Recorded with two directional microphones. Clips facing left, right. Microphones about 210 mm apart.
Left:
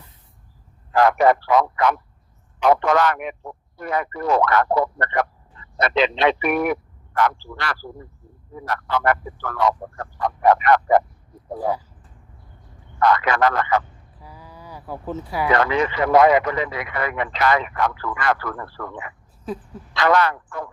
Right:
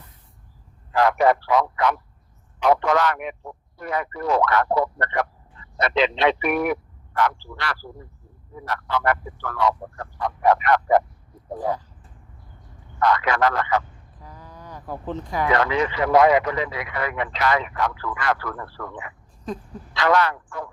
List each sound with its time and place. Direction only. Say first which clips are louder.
0.9 s speech: left 2 dB; 50° left (ahead or behind)
13.0 s speech: left 2 dB; 55° left (ahead or behind)
14.2 s a sound: even; 10° left (ahead or behind)
15.7 s a man's voice: left 2 dB; 55° left (ahead or behind)
19.5 s a woman's voice: left 1 dB; 5° left (ahead or behind)
20.0 s speech: left 2 dB; 55° left (ahead or behind)